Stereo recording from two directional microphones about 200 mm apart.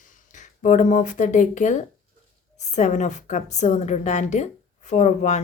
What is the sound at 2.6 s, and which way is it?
A woman's voice, 35° left (ahead or behind).